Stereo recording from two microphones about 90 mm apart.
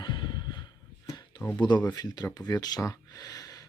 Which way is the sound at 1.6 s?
50° left (ahead or behind).